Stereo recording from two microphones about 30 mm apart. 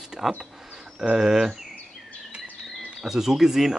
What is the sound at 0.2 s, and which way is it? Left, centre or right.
Speech, centre.